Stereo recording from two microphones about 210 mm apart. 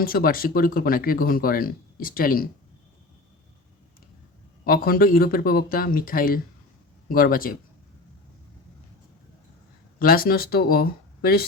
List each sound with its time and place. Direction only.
0.0 s speech: 45° left (ahead or behind)
4.6 s speech: 45° left (ahead or behind)
10.0 s speech: 45° left (ahead or behind)